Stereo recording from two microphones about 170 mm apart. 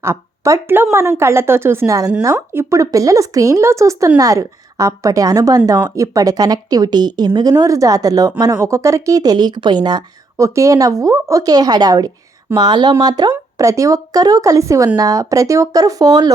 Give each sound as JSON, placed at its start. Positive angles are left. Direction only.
{"t": 0.0, "sound": "a woman's voice", "side_deg": -15}